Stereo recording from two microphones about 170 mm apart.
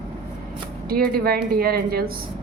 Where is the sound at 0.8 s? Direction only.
60° right (ahead or behind).